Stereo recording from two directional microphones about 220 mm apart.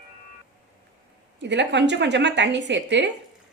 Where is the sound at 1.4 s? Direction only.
55° right (ahead or behind).